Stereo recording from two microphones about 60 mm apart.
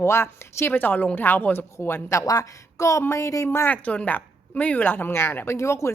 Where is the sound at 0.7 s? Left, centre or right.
Left.